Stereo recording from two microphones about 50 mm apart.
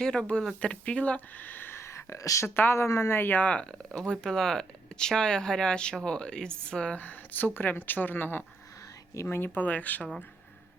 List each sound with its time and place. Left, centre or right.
0.0 s speech: centre
1.3 s speech: left
1.8 s a sound: left
2.7 s a woman's voice: left
3.3 s speech: left
6.9 s speech: left
9.6 s speech: left